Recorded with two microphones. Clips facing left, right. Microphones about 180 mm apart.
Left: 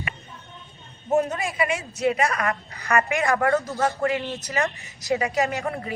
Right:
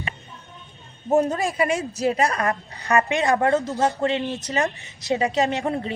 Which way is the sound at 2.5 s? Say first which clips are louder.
Right 2 dB; 25° right (ahead or behind).